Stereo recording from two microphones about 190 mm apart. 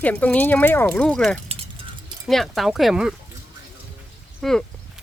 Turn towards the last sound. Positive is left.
turn(degrees=0)  # may be behind; listen again after turning